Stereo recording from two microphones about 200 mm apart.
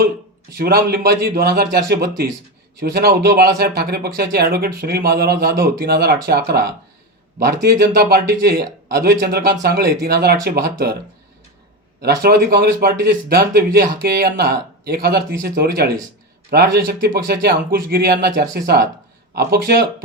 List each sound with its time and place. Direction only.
0.5 s speech: 50° right (ahead or behind)
12.0 s speech: 50° right (ahead or behind)